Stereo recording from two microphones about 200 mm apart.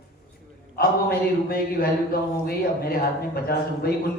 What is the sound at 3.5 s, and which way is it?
Speech, 50° left (ahead or behind).